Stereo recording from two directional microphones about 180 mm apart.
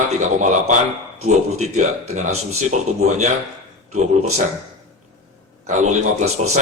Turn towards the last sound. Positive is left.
turn(degrees=-40)  # may be behind; listen again after turning